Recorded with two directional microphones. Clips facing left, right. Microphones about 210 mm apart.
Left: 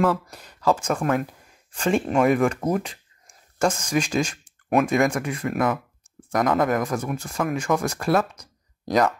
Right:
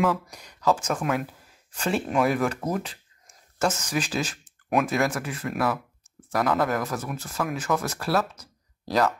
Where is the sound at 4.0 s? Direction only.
5° right (ahead or behind).